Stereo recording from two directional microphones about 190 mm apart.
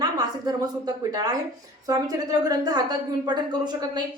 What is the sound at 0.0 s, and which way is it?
A woman's voice, 20° right (ahead or behind).